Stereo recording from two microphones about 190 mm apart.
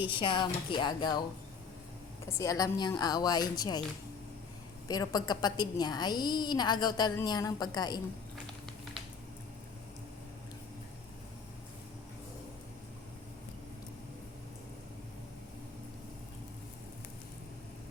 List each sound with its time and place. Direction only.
0.1 s a woman's voice: 25° left (ahead or behind)
2.4 s a woman's voice: 20° left (ahead or behind)
4.9 s a woman's voice: 20° left (ahead or behind)